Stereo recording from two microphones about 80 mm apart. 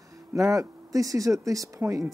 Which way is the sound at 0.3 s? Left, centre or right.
Right.